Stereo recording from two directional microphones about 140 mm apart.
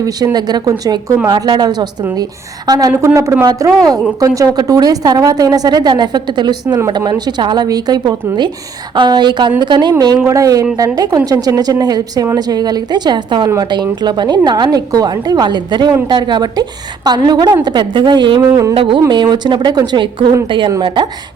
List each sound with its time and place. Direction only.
0.3 s a woman's voice: 30° right (ahead or behind)
10.2 s a woman's voice: 20° right (ahead or behind)
18.7 s a woman's voice: 40° right (ahead or behind)